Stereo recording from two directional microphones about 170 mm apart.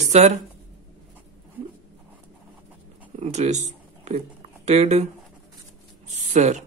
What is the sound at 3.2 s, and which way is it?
Speech, 40° right (ahead or behind).